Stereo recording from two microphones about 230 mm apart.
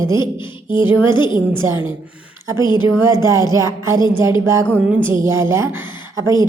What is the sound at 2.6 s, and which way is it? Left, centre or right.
Speech, centre.